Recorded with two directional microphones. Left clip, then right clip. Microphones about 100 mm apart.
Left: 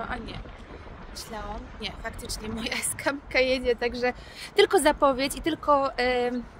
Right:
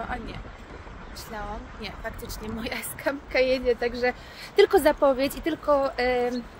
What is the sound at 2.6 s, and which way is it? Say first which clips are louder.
A woman's voice: left 2 dB; 75° left (ahead or behind).